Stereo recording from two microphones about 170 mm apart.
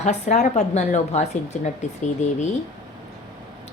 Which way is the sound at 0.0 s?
45° left (ahead or behind).